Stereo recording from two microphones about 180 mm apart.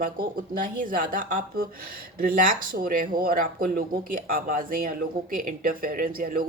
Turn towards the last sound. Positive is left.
turn(degrees=-55)  # may be behind; listen again after turning